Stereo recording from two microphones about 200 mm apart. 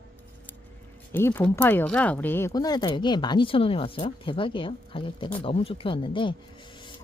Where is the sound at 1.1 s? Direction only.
10° left (ahead or behind).